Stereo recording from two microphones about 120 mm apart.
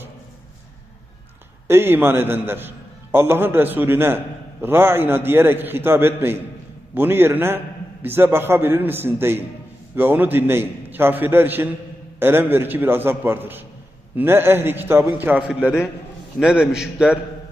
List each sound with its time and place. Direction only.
1.6 s a man's voice: 20° right (ahead or behind); by 17.2 s 5° right (ahead or behind)